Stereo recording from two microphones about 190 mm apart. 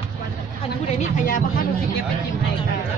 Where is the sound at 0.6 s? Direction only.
40° left (ahead or behind).